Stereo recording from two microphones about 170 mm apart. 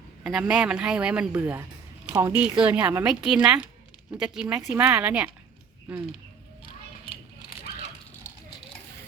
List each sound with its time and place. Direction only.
0.3 s a woman's voice: 5° right (ahead or behind)